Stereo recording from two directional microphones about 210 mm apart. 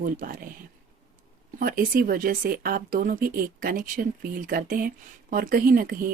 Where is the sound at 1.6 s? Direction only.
45° right (ahead or behind).